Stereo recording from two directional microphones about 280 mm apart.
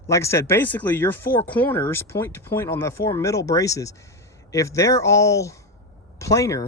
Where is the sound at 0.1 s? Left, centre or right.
Centre.